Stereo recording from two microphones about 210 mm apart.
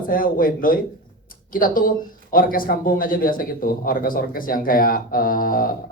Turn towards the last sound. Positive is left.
turn(degrees=40)  # may be behind; listen again after turning